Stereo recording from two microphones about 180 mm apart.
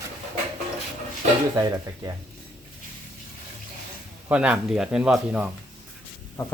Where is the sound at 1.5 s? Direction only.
20° right (ahead or behind).